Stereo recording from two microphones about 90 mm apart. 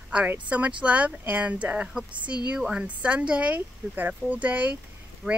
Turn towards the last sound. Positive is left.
turn(degrees=-15)  # may be behind; listen again after turning